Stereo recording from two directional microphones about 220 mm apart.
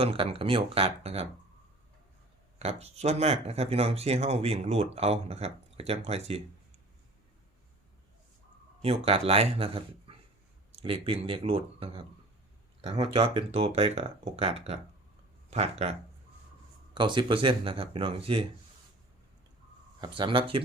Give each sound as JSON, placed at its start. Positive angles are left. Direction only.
{"t": 0.0, "sound": "speech", "side_deg": -25}
{"t": 2.6, "sound": "speech", "side_deg": -30}
{"t": 8.8, "sound": "speech", "side_deg": -25}
{"t": 20.0, "sound": "speech", "side_deg": -20}